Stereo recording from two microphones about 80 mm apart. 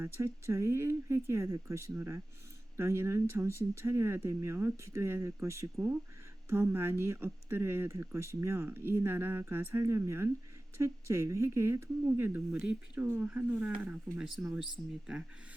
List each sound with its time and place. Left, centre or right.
0.0 s speech: right; by 15.2 s centre